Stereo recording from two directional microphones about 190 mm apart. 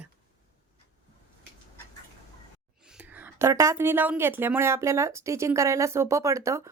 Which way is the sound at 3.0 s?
10° right (ahead or behind).